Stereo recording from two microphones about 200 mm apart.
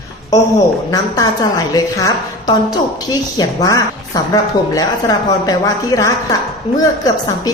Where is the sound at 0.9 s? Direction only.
20° left (ahead or behind).